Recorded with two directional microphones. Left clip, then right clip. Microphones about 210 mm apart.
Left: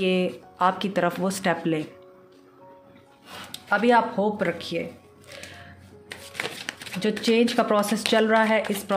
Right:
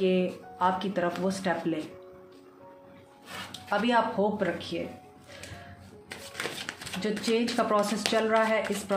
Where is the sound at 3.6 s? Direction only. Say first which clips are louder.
Left 6 dB; 55° left (ahead or behind).